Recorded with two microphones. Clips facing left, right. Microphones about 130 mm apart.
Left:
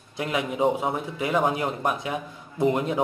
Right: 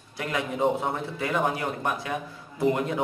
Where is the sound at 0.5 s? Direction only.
5° left (ahead or behind).